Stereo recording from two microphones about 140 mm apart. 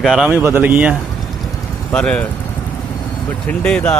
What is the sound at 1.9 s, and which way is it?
Speech, 10° left (ahead or behind).